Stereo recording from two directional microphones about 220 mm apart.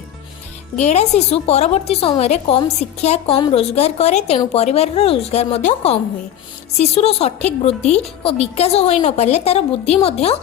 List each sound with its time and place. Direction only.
0.8 s a woman's voice: 30° left (ahead or behind)